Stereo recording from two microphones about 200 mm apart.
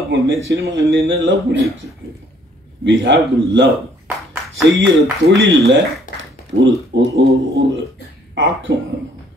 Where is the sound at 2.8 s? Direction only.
65° right (ahead or behind).